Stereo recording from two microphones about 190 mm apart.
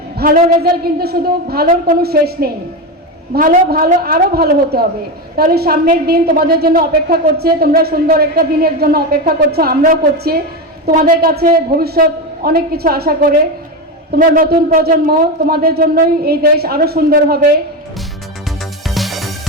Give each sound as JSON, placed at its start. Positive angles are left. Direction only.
{"t": 0.2, "sound": "a woman's voice", "side_deg": -55}
{"t": 18.9, "sound": "music", "side_deg": 0}